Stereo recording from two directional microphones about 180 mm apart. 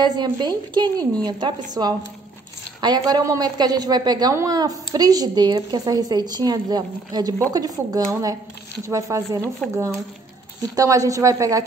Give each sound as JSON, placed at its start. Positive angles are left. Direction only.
{"t": 0.0, "sound": "a woman's voice", "side_deg": -25}
{"t": 9.6, "sound": "speech", "side_deg": 5}
{"t": 10.8, "sound": "a woman's voice", "side_deg": -20}